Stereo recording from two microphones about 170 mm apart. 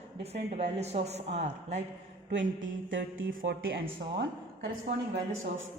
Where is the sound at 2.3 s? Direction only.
90° right.